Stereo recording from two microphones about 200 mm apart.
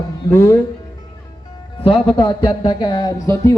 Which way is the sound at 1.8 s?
30° left (ahead or behind).